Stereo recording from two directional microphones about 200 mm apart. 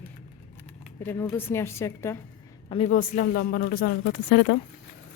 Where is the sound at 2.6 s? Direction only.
30° left (ahead or behind).